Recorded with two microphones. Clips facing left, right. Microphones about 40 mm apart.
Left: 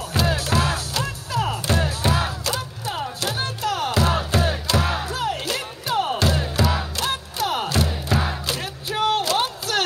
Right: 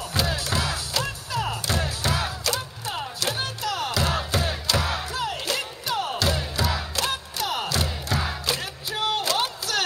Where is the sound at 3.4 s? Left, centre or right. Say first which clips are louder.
Left 3 dB; left.